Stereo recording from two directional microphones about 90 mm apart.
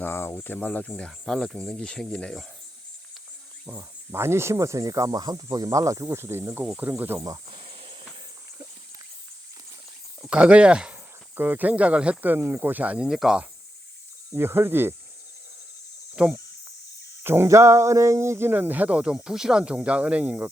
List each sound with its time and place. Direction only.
0.0 s speech: 25° left (ahead or behind)
1.2 s speech: 5° left (ahead or behind)
3.7 s speech: 25° right (ahead or behind)
7.5 s snake: 90° right
10.2 s speech: 10° right (ahead or behind)
14.3 s speech: 25° right (ahead or behind)
16.1 s speech: 15° right (ahead or behind)
17.2 s speech: 30° right (ahead or behind); by 20.5 s 15° right (ahead or behind)